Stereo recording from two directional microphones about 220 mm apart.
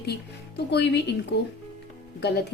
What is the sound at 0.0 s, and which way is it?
A woman's voice, 50° left (ahead or behind).